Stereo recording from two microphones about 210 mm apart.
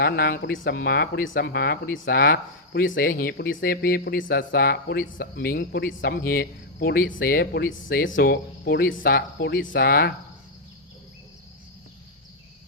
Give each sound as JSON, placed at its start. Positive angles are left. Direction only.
{"t": 0.0, "sound": "speech", "side_deg": 45}
{"t": 0.5, "sound": "speech", "side_deg": 65}
{"t": 0.8, "sound": "speech", "side_deg": 45}
{"t": 9.0, "sound": "speech", "side_deg": 50}
{"t": 9.7, "sound": "speech", "side_deg": 50}